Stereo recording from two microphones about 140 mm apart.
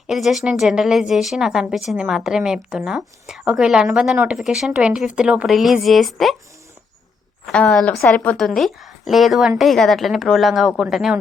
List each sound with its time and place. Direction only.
0.1 s a woman's voice: centre (ahead or behind)
7.4 s a woman's voice: 5° left (ahead or behind)